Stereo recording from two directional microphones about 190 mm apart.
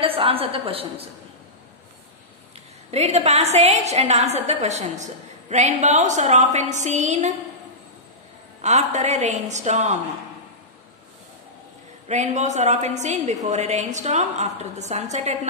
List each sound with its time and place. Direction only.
0.0 s a woman's voice: 30° right (ahead or behind)
2.9 s a woman's voice: 35° right (ahead or behind)
8.5 s a woman's voice: 40° right (ahead or behind)
12.1 s a woman's voice: 40° right (ahead or behind)